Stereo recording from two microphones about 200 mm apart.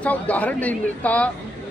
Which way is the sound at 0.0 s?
5° left (ahead or behind).